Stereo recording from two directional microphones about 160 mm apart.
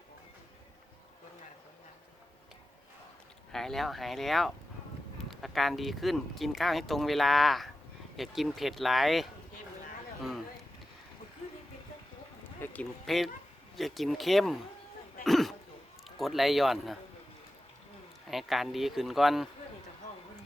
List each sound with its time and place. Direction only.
3.5 s speech: centre (ahead or behind)
12.5 s speech: 10° left (ahead or behind)
15.2 s a sound: centre (ahead or behind)
16.0 s speech: centre (ahead or behind)
18.3 s speech: centre (ahead or behind)